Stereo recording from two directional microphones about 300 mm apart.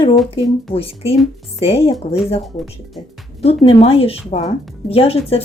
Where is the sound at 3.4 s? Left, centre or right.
Centre.